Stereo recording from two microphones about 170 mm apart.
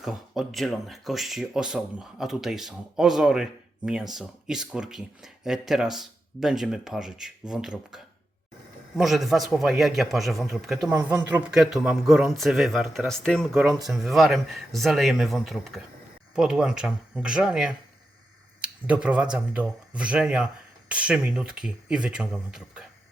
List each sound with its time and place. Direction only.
0.0 s speech: centre (ahead or behind)
10.9 s speech: 20° right (ahead or behind)
11.4 s speech: centre (ahead or behind)